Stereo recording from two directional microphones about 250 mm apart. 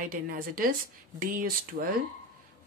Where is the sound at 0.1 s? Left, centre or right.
Right.